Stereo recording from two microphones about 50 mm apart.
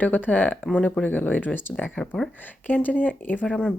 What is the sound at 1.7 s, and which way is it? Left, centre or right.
Speech, left.